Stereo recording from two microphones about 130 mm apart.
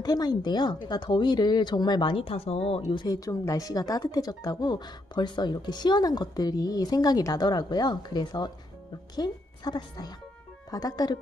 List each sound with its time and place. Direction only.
0.0 s speech: 30° left (ahead or behind); by 2.8 s 50° left (ahead or behind)
2.9 s a woman's voice: 35° left (ahead or behind)